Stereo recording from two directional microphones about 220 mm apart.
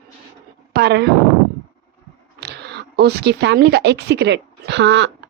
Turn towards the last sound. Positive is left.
turn(degrees=-50)  # may be behind; listen again after turning